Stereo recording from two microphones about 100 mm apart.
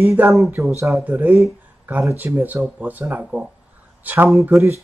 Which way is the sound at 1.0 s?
15° right (ahead or behind).